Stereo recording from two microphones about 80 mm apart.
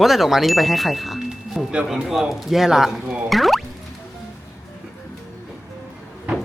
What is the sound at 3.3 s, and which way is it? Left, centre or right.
Music, centre.